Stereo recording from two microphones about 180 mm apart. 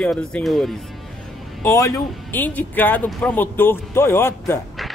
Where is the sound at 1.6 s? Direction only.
20° left (ahead or behind).